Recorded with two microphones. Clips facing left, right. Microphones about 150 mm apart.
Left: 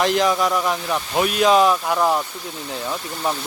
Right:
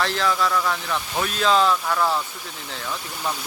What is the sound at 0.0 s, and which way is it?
Speech, 15° left (ahead or behind).